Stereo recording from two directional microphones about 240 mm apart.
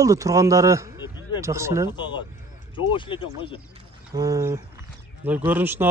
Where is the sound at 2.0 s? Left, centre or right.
Centre.